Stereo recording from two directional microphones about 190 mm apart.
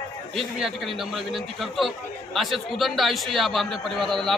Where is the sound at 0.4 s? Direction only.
Centre (ahead or behind).